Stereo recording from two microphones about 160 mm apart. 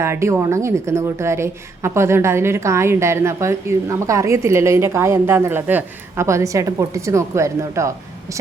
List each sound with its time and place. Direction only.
0.0 s a woman's voice: 15° right (ahead or behind)